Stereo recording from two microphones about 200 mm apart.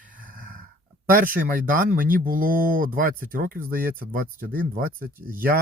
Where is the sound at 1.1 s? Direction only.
45° right (ahead or behind).